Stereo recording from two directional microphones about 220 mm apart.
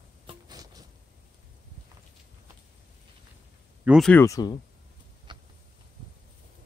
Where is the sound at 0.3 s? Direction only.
20° right (ahead or behind).